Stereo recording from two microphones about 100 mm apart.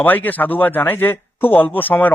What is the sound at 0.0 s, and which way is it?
Speech, 20° left (ahead or behind).